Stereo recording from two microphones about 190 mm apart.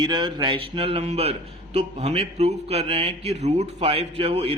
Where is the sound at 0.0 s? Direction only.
25° right (ahead or behind).